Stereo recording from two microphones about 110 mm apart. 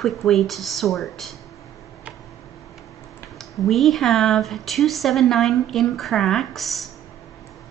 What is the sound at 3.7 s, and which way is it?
Speech, centre (ahead or behind).